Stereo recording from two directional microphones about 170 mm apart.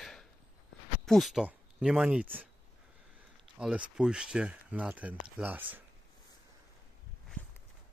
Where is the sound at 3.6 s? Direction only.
5° right (ahead or behind).